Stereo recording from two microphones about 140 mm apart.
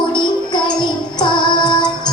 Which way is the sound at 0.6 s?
35° left (ahead or behind).